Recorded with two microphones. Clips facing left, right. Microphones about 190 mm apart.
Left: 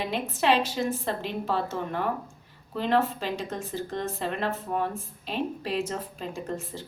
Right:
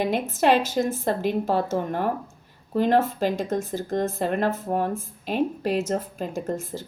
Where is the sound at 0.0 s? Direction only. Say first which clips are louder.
Right 5 dB; 45° right (ahead or behind).